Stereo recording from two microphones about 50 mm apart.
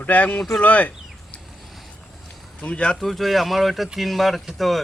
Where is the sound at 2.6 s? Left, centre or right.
Left.